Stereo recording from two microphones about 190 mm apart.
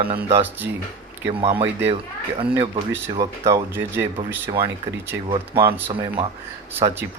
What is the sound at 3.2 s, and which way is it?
Speech, 15° right (ahead or behind).